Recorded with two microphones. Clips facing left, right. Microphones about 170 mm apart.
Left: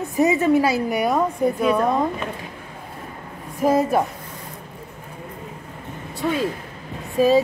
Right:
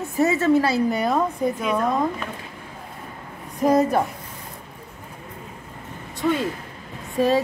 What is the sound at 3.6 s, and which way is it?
Speech, 5° left (ahead or behind).